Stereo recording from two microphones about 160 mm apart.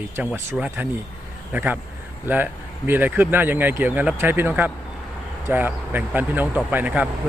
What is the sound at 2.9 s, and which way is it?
Speech, 10° right (ahead or behind).